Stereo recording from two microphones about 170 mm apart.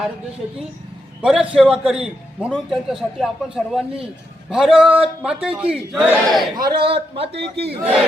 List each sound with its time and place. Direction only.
1.2 s a man's voice: 5° right (ahead or behind)
6.7 s a man's voice: 35° right (ahead or behind)
7.3 s speech: 75° right (ahead or behind)